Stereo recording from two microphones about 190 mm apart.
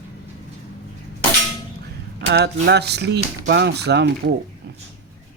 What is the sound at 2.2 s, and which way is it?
Speech, 65° right (ahead or behind).